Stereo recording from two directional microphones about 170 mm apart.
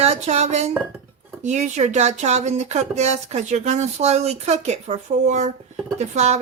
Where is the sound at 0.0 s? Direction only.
40° right (ahead or behind).